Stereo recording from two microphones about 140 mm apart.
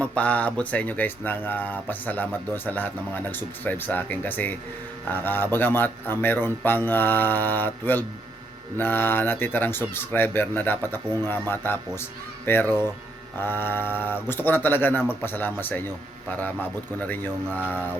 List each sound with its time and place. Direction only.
0.0 s speech: 10° left (ahead or behind)